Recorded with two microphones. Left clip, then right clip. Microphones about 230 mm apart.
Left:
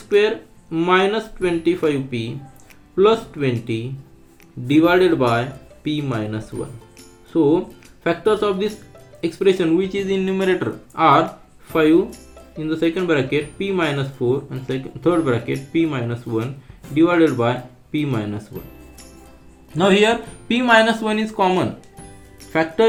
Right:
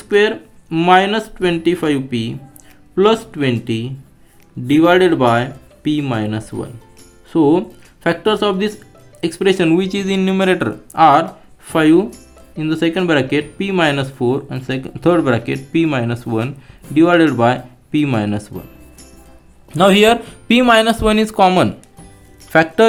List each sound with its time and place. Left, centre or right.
0.1 s speech: right
4.8 s speech: right
19.7 s speech: right